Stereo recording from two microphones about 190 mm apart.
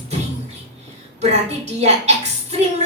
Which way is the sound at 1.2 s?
35° right (ahead or behind).